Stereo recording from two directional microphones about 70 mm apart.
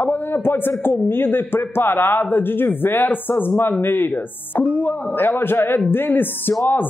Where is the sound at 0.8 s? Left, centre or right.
Left.